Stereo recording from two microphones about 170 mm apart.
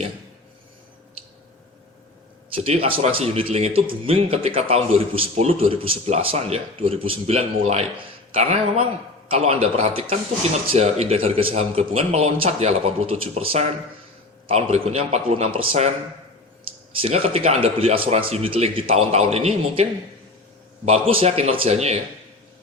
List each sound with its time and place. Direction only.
2.6 s speech: 35° right (ahead or behind)
17.0 s speech: 35° right (ahead or behind)